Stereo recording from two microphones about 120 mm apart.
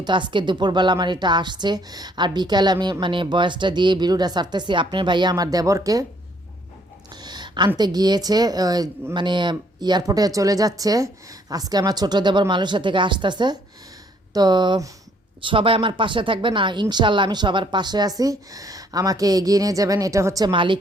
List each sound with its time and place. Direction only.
0.0 s a woman's voice: 40° right (ahead or behind)
7.2 s a sound: 35° right (ahead or behind)
7.8 s a woman's voice: 35° right (ahead or behind)
20.5 s speech: 45° right (ahead or behind)